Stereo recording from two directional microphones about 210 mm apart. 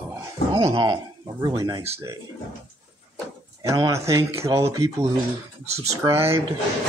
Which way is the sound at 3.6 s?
15° right (ahead or behind).